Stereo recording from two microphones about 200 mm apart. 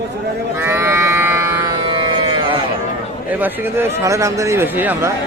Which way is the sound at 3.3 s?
10° right (ahead or behind).